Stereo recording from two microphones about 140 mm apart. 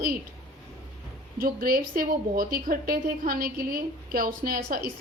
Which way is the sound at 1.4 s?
90° right.